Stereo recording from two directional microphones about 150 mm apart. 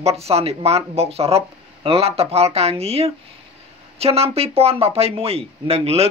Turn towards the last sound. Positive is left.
turn(degrees=-40)  # may be behind; listen again after turning